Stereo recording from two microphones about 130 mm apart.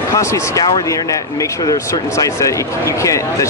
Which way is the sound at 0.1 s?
25° left (ahead or behind).